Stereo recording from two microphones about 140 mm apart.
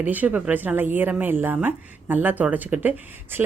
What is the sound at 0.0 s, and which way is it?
A woman's voice, 10° right (ahead or behind).